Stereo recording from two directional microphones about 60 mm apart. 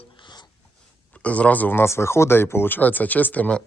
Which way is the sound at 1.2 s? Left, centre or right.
Left.